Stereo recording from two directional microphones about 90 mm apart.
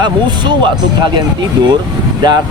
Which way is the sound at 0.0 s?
55° right (ahead or behind).